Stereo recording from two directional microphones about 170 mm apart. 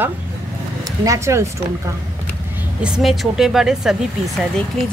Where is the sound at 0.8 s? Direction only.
20° right (ahead or behind).